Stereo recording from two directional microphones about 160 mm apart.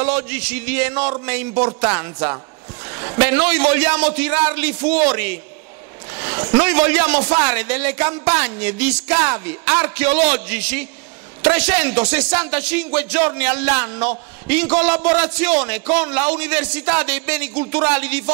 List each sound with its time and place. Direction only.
0.0 s music: 10° right (ahead or behind)
6.5 s music: 10° right (ahead or behind)